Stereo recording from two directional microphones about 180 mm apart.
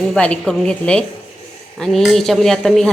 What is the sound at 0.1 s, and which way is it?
Speech, 5° left (ahead or behind).